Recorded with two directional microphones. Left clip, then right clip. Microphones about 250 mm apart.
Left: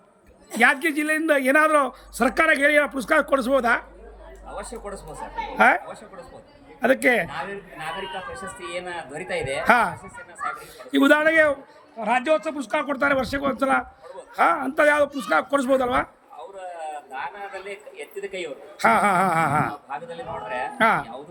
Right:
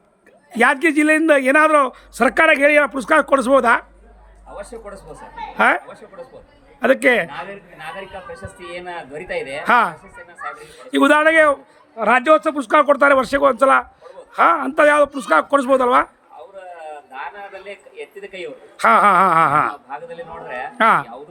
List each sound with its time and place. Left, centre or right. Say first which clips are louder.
0.5 s a man's voice: right 4 dB; centre